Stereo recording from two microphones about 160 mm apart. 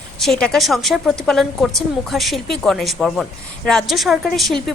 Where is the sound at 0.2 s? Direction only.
5° left (ahead or behind).